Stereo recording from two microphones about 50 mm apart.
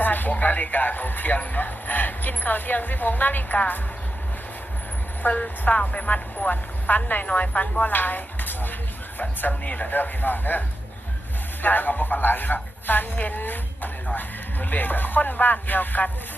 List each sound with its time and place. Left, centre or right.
0.0 s speech: left
5.2 s speech: left
9.5 s speech: left
11.6 s speech: left